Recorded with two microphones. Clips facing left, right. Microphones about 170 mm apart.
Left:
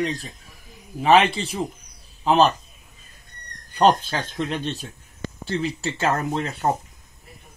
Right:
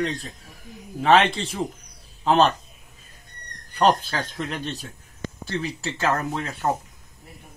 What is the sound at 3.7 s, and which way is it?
Speech, 20° left (ahead or behind).